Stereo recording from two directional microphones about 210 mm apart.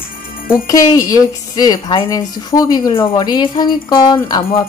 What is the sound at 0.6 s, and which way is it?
A woman's voice, 15° left (ahead or behind).